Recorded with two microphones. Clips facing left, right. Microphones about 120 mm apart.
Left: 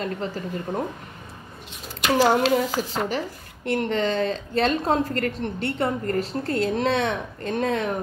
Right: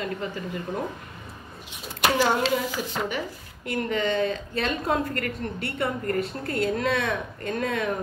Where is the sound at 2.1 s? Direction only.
40° left (ahead or behind).